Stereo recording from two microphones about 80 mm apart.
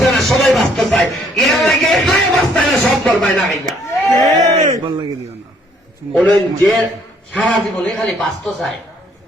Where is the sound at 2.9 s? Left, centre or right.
Centre.